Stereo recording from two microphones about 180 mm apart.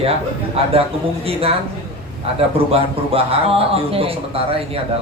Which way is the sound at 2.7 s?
30° right (ahead or behind).